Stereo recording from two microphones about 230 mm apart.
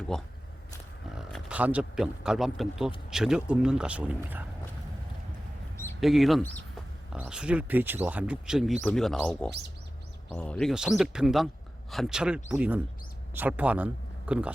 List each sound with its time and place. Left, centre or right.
0.1 s speech: centre
6.0 s speech: centre